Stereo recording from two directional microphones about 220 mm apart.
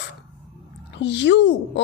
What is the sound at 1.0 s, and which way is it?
Speech, 50° left (ahead or behind).